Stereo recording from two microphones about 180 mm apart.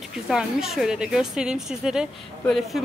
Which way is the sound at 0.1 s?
Centre (ahead or behind).